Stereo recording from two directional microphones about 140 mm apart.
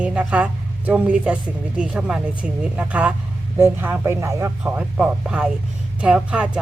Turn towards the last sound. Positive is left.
turn(degrees=-5)  # may be behind; listen again after turning